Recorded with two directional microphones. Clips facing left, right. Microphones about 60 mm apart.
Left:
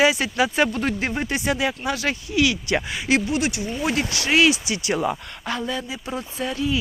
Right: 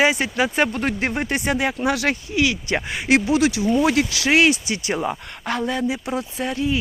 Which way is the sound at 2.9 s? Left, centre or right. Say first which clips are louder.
Right 5 dB; right.